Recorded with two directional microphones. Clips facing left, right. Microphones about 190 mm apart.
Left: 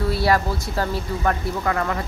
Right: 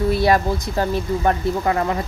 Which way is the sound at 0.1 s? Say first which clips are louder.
Right 2 dB; 20° right (ahead or behind).